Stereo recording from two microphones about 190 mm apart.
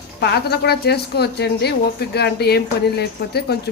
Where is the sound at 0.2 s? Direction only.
60° left (ahead or behind).